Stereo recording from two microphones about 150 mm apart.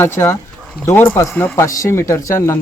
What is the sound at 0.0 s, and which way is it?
Speech, 15° left (ahead or behind).